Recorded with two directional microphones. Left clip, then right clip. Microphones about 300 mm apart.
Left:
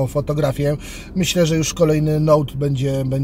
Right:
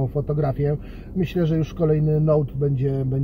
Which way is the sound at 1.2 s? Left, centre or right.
Left.